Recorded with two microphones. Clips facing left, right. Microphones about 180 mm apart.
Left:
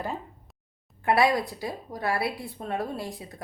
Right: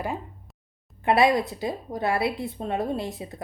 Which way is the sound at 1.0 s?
20° right (ahead or behind).